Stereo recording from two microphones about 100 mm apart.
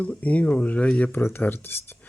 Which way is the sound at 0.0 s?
15° left (ahead or behind).